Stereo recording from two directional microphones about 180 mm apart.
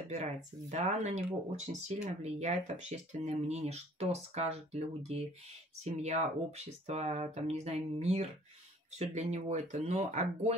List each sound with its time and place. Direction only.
0.1 s speech: 40° right (ahead or behind)